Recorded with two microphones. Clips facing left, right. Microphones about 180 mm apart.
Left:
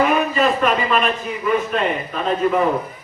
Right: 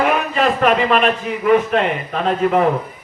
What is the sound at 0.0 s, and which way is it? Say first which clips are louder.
A man's voice: even; 70° right (ahead or behind).